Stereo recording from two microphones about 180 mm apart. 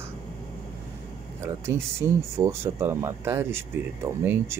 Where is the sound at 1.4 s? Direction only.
15° right (ahead or behind).